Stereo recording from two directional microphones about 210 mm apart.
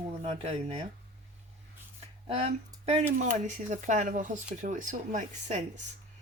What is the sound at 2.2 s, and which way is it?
Speech, 30° right (ahead or behind).